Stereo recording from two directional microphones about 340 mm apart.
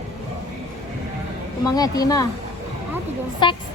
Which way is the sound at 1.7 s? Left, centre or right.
Centre.